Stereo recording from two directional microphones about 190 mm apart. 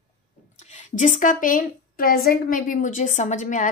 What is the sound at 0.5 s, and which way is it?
A woman's voice, 40° left (ahead or behind).